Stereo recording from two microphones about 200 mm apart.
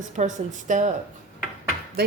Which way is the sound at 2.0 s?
50° right (ahead or behind).